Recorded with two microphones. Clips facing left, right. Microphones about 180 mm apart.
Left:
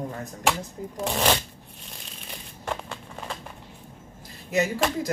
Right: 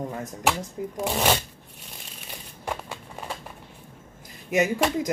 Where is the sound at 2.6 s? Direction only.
10° right (ahead or behind).